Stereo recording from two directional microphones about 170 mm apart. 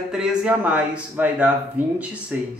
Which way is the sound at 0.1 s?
5° right (ahead or behind).